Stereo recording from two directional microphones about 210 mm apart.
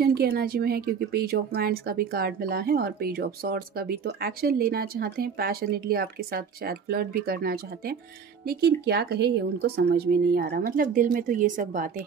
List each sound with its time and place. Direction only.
0.0 s speech: 45° right (ahead or behind)